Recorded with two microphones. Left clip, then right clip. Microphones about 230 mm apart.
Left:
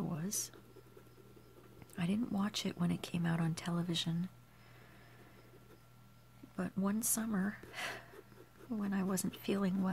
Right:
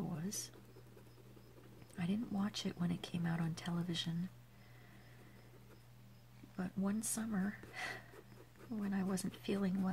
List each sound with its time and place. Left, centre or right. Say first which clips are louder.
0.0 s a sound: left 4 dB; left
2.0 s speech: left 4 dB; left
6.5 s speech: left 3 dB; left